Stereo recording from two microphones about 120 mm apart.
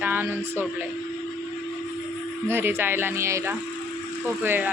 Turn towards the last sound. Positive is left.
turn(degrees=-20)  # may be behind; listen again after turning